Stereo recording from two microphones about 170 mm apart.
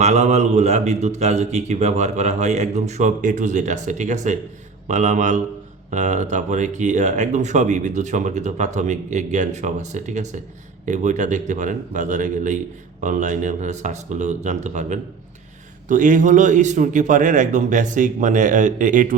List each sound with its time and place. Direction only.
0.0 s a man's voice: 40° right (ahead or behind)